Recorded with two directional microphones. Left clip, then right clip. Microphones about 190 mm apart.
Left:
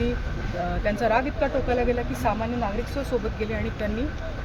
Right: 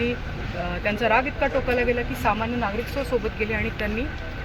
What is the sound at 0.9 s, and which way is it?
Speech, centre (ahead or behind).